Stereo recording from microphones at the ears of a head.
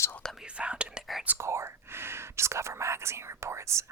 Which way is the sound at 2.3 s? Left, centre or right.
Right.